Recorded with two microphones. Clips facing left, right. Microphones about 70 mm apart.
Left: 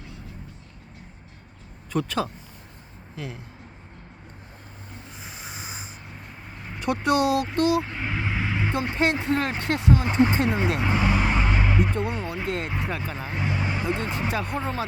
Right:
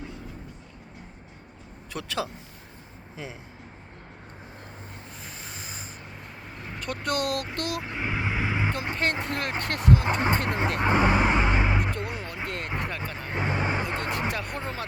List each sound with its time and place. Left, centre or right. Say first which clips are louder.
1.9 s speech: left 5 dB; centre
5.2 s a sound: left 3 dB; centre
6.8 s speech: left 7 dB; centre
9.0 s speech: left 7 dB; centre
10.8 s vehicle: right 2 dB; right
11.8 s a sound: left 5 dB; centre
13.3 s speech: right 2 dB; right
13.8 s speech: left 2 dB; centre